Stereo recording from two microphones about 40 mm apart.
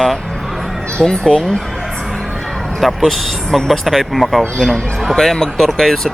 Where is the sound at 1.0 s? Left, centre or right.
Centre.